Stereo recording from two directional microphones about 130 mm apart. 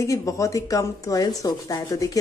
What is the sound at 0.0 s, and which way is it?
A woman's voice, 25° left (ahead or behind).